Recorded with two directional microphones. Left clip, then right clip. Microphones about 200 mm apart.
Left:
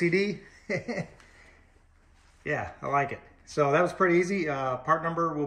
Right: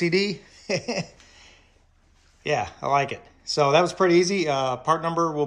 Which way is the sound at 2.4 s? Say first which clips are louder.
Right 7 dB; 20° right (ahead or behind).